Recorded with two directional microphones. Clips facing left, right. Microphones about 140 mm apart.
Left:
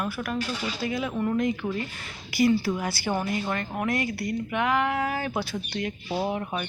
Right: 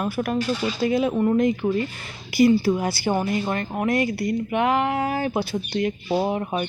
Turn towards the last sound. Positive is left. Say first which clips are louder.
# right 5 dB
turn(degrees=-25)  # may be behind; listen again after turning